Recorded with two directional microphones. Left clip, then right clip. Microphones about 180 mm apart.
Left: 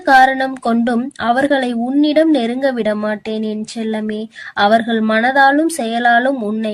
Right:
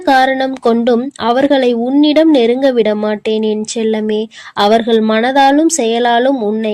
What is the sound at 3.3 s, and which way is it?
Speech, 25° left (ahead or behind).